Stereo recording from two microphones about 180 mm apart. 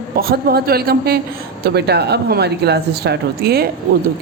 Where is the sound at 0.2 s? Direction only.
60° right (ahead or behind).